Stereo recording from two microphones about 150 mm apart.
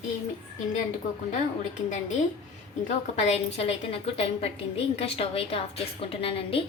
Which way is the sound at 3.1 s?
45° left (ahead or behind).